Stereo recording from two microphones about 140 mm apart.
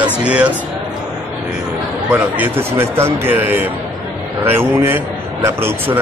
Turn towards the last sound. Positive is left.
turn(degrees=-15)  # may be behind; listen again after turning